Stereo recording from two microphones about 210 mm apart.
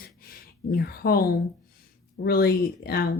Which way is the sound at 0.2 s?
45° left (ahead or behind).